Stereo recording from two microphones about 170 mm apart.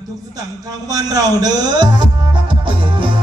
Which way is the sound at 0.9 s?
20° right (ahead or behind).